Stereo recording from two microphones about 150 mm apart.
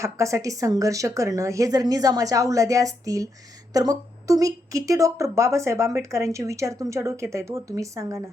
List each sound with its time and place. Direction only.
0.0 s a woman's voice: 20° right (ahead or behind)